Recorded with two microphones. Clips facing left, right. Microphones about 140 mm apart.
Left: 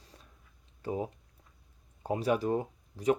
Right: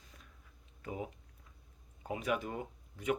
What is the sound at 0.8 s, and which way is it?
Speech, 35° left (ahead or behind).